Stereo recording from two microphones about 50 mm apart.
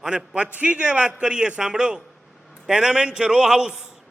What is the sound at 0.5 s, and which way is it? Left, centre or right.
A man's voice, right.